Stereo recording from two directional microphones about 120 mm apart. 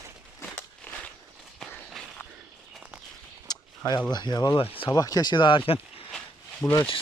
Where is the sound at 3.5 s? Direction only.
35° left (ahead or behind).